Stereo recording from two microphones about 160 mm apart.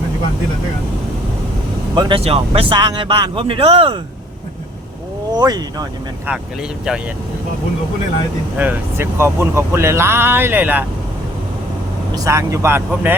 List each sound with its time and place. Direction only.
2.0 s speech: 30° right (ahead or behind)
5.4 s speech: 25° right (ahead or behind)
8.5 s speech: 10° right (ahead or behind)
12.1 s speech: 20° right (ahead or behind)